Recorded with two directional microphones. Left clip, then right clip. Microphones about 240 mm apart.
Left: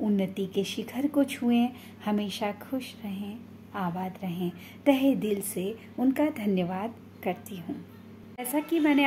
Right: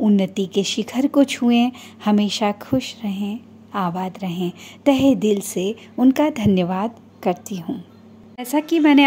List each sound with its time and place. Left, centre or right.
0.0 s speech: right